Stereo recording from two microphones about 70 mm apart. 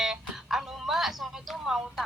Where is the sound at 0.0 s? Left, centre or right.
Centre.